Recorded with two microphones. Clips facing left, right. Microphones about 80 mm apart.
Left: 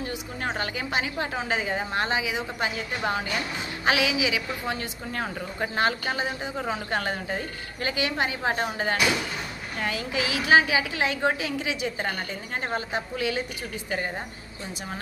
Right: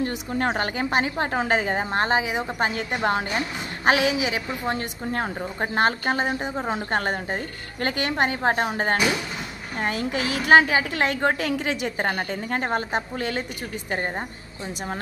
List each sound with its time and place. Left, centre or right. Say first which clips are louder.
0.4 s a woman's voice: right 6 dB; right
6.7 s a woman's voice: right 3 dB; right